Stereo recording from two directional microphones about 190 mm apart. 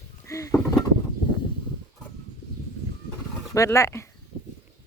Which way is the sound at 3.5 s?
15° left (ahead or behind).